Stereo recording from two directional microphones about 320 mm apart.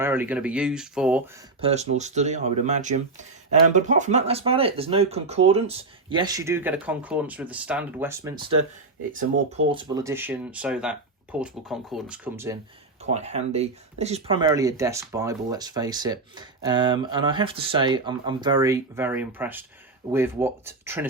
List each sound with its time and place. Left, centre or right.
0.0 s speech: centre
1.6 s speech: right
13.0 s speech: right